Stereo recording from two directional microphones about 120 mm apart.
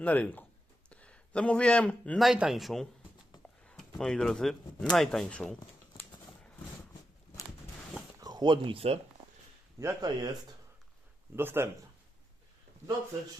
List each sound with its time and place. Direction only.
0.0 s speech: 15° left (ahead or behind)
2.1 s speech: 5° right (ahead or behind)
8.2 s speech: 35° right (ahead or behind); by 9.0 s 55° right (ahead or behind)
9.8 s speech: 35° right (ahead or behind)
11.3 s speech: 20° right (ahead or behind)